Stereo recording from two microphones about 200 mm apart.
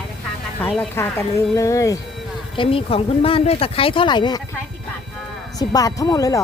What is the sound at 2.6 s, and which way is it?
Speech, 25° left (ahead or behind).